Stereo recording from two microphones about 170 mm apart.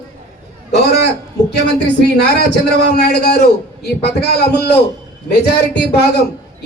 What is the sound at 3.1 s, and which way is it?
Speech, 75° left (ahead or behind).